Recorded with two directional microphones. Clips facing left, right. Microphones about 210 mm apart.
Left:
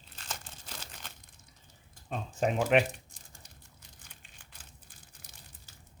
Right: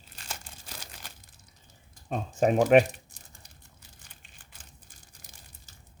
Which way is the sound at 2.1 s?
45° right (ahead or behind).